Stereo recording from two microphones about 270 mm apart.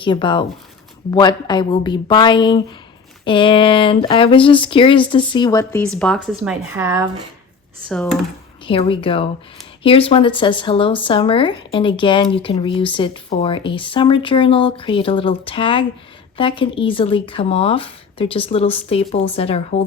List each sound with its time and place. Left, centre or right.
0.0 s a woman's voice: centre
7.9 s speech: centre
8.6 s speech: centre